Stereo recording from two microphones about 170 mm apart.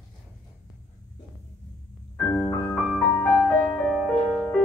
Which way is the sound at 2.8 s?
5° left (ahead or behind).